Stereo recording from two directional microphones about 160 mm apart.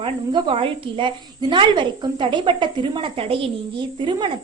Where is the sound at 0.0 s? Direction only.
35° right (ahead or behind).